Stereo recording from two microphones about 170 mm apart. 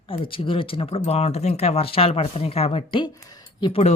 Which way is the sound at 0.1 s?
30° left (ahead or behind).